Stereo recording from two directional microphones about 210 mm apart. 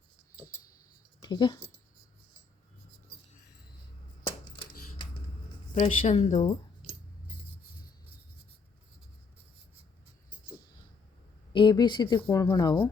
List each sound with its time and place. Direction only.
1.2 s speech: 20° left (ahead or behind)
5.7 s speech: 30° left (ahead or behind)
11.5 s speech: 20° left (ahead or behind)